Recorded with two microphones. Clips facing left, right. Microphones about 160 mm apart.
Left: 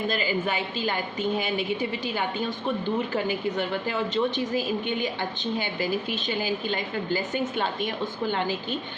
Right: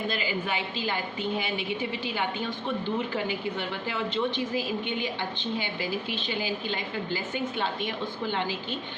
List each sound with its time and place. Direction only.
0.1 s a woman's voice: 45° left (ahead or behind)
8.3 s a woman's voice: 45° left (ahead or behind)